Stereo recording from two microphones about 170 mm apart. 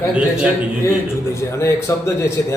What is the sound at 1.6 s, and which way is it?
Speech, 15° left (ahead or behind).